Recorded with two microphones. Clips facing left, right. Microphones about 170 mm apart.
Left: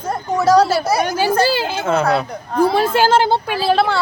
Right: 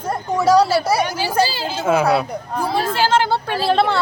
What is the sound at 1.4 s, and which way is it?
Speech, 60° left (ahead or behind).